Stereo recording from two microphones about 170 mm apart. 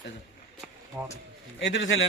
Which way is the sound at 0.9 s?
5° right (ahead or behind).